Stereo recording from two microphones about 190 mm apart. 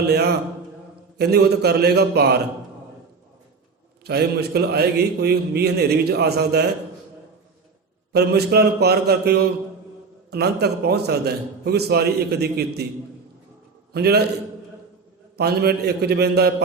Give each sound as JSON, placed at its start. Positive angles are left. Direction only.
{"t": 0.1, "sound": "a man's voice", "side_deg": -60}
{"t": 4.0, "sound": "a man's voice", "side_deg": -60}
{"t": 8.1, "sound": "a man's voice", "side_deg": -60}
{"t": 13.9, "sound": "a man's voice", "side_deg": -55}
{"t": 15.4, "sound": "a man's voice", "side_deg": -55}